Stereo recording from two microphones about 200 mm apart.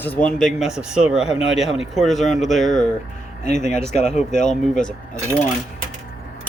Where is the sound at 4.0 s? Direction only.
35° left (ahead or behind).